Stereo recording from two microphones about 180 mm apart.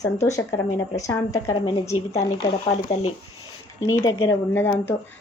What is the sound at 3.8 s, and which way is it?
Speech, 15° left (ahead or behind).